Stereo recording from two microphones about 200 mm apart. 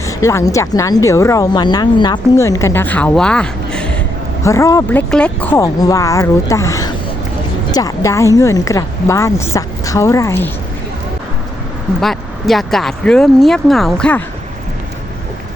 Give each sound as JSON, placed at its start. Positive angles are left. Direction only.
{"t": 0.0, "sound": "speech", "side_deg": 15}
{"t": 4.4, "sound": "speech", "side_deg": 15}
{"t": 11.9, "sound": "speech", "side_deg": 0}